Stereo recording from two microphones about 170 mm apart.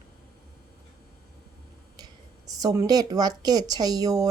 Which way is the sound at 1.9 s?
20° right (ahead or behind).